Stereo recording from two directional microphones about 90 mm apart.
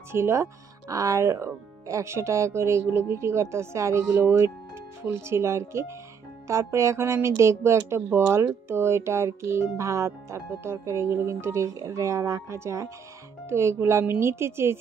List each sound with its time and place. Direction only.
0.1 s speech: 30° right (ahead or behind)